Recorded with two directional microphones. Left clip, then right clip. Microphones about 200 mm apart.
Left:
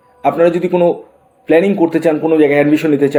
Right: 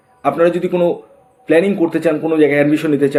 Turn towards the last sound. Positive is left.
turn(degrees=20)  # may be behind; listen again after turning